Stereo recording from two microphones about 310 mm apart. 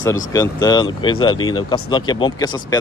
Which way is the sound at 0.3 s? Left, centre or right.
Centre.